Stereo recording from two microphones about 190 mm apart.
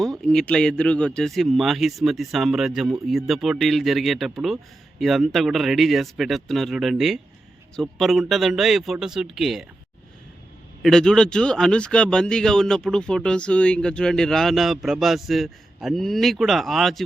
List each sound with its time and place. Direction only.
0.0 s speech: 5° left (ahead or behind)
10.8 s speech: 5° left (ahead or behind)